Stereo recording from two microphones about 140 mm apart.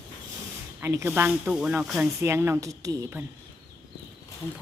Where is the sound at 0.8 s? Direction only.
20° right (ahead or behind).